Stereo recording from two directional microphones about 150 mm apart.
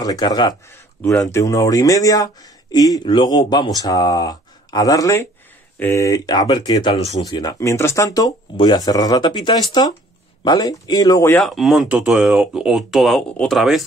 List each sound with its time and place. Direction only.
0.0 s speech: 25° left (ahead or behind)
11.3 s speech: centre (ahead or behind)